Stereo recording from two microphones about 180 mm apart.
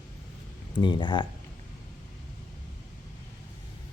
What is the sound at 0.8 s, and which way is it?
Speech, 25° left (ahead or behind).